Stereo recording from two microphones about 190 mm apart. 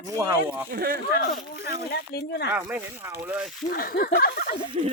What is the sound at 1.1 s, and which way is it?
Speech, 50° left (ahead or behind).